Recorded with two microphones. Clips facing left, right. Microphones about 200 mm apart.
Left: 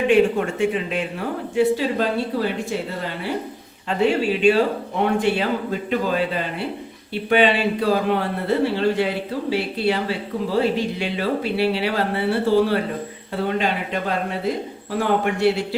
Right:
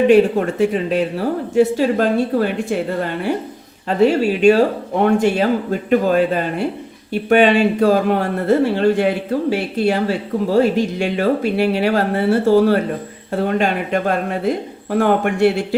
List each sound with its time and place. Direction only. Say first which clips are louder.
0.1 s speech: right 4 dB; 40° right (ahead or behind)
3.8 s a man's voice: right 5 dB; 40° right (ahead or behind)